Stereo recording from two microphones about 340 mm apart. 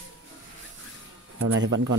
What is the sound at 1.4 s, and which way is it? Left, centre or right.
Speech, right.